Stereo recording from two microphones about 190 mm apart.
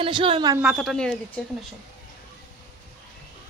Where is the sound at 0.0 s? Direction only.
25° right (ahead or behind).